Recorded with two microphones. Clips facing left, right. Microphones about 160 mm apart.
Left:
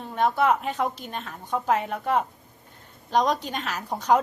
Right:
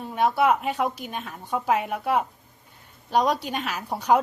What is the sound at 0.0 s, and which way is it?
A woman's voice, 10° right (ahead or behind).